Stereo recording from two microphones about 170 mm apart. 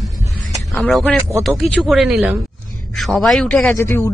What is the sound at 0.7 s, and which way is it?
A man's voice, 10° left (ahead or behind).